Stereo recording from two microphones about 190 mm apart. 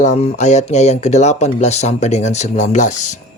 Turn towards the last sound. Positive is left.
turn(degrees=40)  # may be behind; listen again after turning